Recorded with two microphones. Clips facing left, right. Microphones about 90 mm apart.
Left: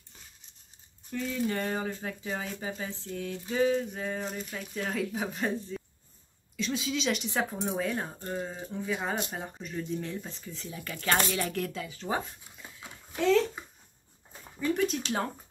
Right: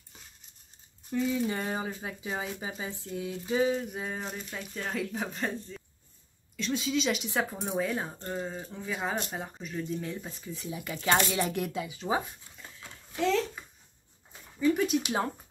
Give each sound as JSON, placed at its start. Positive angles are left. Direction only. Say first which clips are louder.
{"t": 1.1, "sound": "speech", "louder": "right 2 dB", "side_deg": -5}
{"t": 12.5, "sound": "dog", "louder": "left 3 dB", "side_deg": 10}
{"t": 14.6, "sound": "speech", "louder": "right 3 dB", "side_deg": -5}